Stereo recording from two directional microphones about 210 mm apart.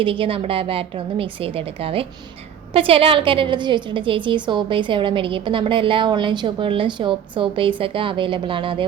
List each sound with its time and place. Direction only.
0.0 s a woman's voice: 25° right (ahead or behind)